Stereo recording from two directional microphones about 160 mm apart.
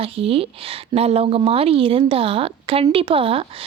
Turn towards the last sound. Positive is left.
turn(degrees=-35)  # may be behind; listen again after turning